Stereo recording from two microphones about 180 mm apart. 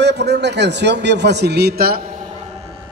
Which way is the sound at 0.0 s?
70° right (ahead or behind).